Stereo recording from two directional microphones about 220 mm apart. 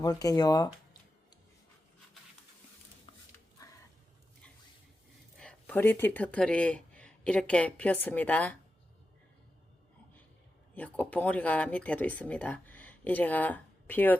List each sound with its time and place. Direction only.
0.0 s speech: 15° left (ahead or behind)
3.6 s a sound: 15° left (ahead or behind)
5.4 s speech: 5° left (ahead or behind)
10.8 s speech: 5° left (ahead or behind)